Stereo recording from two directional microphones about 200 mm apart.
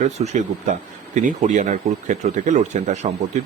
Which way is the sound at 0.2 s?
35° right (ahead or behind).